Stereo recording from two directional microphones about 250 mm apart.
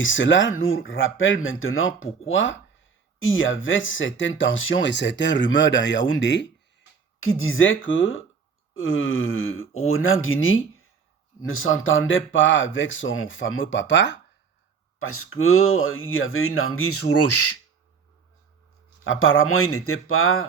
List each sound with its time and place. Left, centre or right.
0.0 s speech: left
14.9 s speech: left
19.0 s speech: left